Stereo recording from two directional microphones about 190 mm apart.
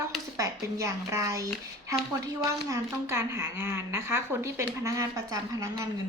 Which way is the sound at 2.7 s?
15° right (ahead or behind).